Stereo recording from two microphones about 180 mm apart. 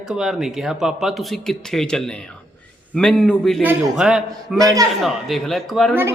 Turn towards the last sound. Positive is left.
turn(degrees=0)  # may be behind; listen again after turning